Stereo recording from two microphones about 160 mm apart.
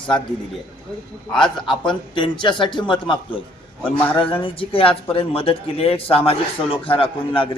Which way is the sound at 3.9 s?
10° left (ahead or behind).